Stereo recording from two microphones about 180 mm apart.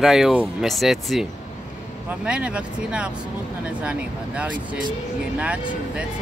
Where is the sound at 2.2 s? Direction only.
5° right (ahead or behind).